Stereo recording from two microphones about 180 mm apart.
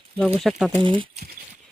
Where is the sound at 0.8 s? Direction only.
30° right (ahead or behind).